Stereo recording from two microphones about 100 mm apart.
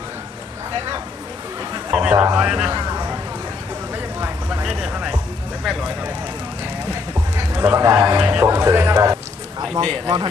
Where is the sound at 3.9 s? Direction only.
20° right (ahead or behind).